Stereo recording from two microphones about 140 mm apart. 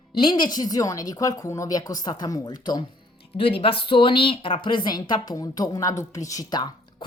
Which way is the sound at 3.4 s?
40° left (ahead or behind).